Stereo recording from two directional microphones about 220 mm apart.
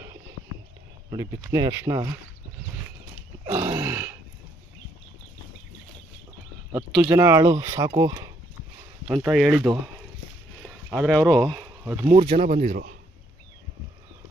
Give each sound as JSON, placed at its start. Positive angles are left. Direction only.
{"t": 1.1, "sound": "speech", "side_deg": -15}
{"t": 3.5, "sound": "a sound", "side_deg": -10}
{"t": 6.7, "sound": "speech", "side_deg": -10}
{"t": 9.0, "sound": "speech", "side_deg": -5}
{"t": 10.9, "sound": "speech", "side_deg": 0}
{"t": 11.8, "sound": "speech", "side_deg": -10}
{"t": 12.4, "sound": "speech", "side_deg": -30}